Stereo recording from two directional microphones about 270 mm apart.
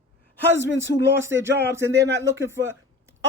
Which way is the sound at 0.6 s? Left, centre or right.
Centre.